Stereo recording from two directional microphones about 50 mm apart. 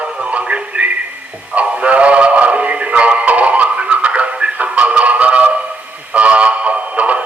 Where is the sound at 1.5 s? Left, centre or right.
Right.